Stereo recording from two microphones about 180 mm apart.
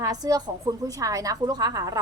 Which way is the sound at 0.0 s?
20° right (ahead or behind).